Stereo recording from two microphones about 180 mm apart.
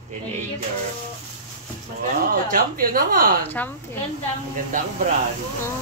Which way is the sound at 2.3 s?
50° right (ahead or behind).